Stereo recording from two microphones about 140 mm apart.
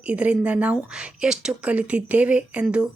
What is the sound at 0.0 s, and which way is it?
Speech, 10° right (ahead or behind).